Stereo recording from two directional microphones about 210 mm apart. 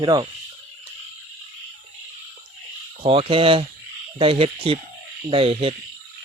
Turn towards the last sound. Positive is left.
turn(degrees=-25)  # may be behind; listen again after turning